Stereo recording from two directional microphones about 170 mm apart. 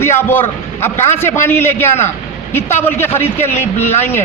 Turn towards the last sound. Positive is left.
turn(degrees=15)  # may be behind; listen again after turning